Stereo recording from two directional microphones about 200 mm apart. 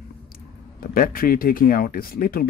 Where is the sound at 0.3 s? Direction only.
45° left (ahead or behind).